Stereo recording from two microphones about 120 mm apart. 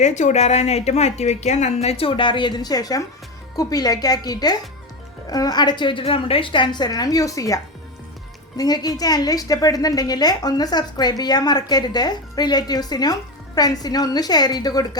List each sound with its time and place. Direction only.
0.0 s a woman's voice: 80° left; by 14.8 s 35° left (ahead or behind)